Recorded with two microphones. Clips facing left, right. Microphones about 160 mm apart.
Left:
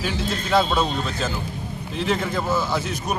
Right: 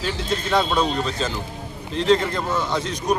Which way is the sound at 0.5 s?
5° left (ahead or behind).